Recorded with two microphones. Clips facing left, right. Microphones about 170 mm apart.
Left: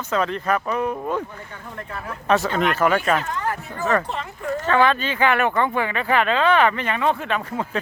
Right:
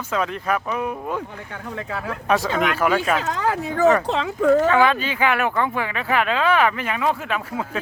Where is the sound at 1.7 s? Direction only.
90° right.